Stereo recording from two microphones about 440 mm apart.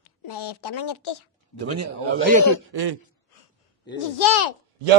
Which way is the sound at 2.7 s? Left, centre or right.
Right.